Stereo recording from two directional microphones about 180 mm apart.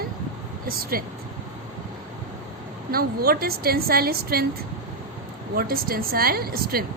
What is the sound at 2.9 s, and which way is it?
A woman's voice, 55° right (ahead or behind).